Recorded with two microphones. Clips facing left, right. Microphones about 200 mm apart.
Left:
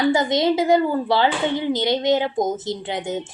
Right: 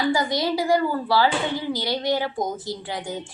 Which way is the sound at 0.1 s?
20° left (ahead or behind).